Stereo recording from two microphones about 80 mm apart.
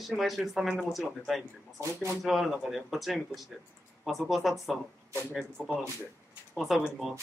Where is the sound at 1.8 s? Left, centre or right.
Right.